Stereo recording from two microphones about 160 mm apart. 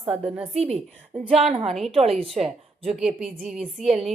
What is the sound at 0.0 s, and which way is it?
Speech, 35° right (ahead or behind).